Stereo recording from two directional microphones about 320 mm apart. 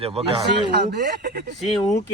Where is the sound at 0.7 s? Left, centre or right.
Right.